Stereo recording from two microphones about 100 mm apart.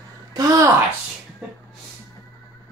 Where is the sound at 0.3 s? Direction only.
35° right (ahead or behind).